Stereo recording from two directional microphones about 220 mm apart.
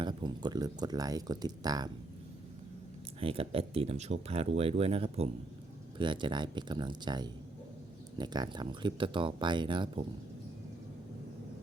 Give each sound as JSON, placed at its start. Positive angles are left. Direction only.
{"t": 0.0, "sound": "speech", "side_deg": -20}
{"t": 3.2, "sound": "speech", "side_deg": -25}